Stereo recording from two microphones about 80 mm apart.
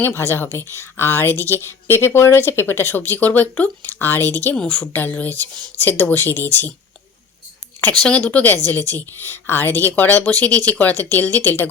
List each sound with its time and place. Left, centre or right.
0.0 s a woman's voice: left
7.8 s a woman's voice: centre